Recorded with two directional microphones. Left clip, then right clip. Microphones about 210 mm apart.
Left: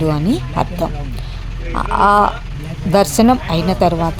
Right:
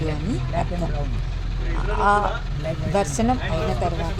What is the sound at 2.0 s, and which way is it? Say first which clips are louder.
Speech: left 8 dB; 45° left (ahead or behind).